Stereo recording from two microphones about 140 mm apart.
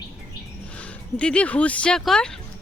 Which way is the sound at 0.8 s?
10° left (ahead or behind).